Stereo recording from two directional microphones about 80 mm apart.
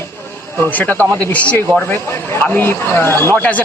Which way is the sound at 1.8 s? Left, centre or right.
Left.